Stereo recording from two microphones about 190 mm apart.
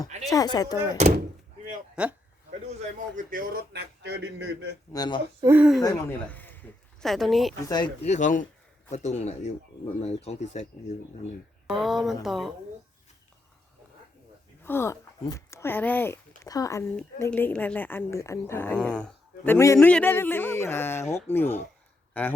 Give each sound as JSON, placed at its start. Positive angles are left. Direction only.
{"t": 0.3, "sound": "speech", "side_deg": 20}
{"t": 2.0, "sound": "speech", "side_deg": -5}
{"t": 2.6, "sound": "speech", "side_deg": -40}
{"t": 3.7, "sound": "speech", "side_deg": -65}
{"t": 4.9, "sound": "speech", "side_deg": 20}
{"t": 5.5, "sound": "speech", "side_deg": -5}
{"t": 5.8, "sound": "speech", "side_deg": 20}
{"t": 6.2, "sound": "a sound", "side_deg": 10}
{"t": 8.0, "sound": "speech", "side_deg": 40}
{"t": 11.7, "sound": "speech", "side_deg": 0}
{"t": 14.6, "sound": "a woman's voice", "side_deg": 10}